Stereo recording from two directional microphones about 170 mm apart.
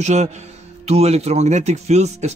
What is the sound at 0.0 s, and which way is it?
A man's voice, 40° right (ahead or behind).